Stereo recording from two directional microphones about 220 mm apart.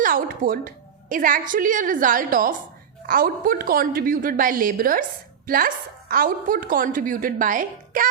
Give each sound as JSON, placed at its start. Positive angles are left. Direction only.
{"t": 0.0, "sound": "a woman's voice", "side_deg": -40}